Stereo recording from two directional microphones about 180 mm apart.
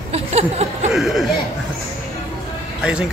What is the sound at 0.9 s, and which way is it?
Speech, centre (ahead or behind).